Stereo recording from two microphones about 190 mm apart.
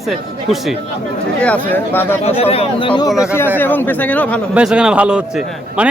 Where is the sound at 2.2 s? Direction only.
30° left (ahead or behind).